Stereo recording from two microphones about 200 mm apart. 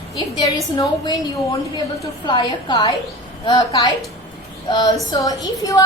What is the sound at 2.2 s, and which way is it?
A woman's voice, 20° left (ahead or behind).